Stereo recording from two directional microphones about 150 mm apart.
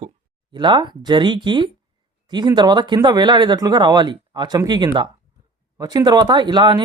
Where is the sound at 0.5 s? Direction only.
30° right (ahead or behind).